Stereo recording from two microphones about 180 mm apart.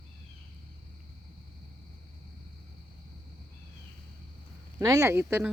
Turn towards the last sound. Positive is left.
turn(degrees=-10)  # may be behind; listen again after turning